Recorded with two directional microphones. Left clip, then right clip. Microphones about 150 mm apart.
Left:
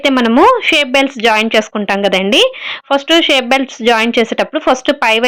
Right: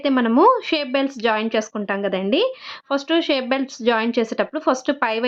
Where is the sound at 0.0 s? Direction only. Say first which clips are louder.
Left 7 dB; 20° left (ahead or behind).